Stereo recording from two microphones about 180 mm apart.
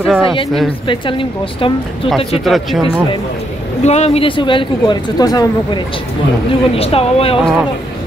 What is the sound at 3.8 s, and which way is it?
Speech, 35° left (ahead or behind).